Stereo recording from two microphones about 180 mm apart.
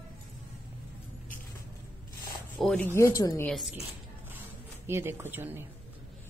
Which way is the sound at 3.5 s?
Centre (ahead or behind).